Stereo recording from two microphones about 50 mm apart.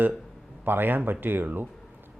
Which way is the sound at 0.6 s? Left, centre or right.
Right.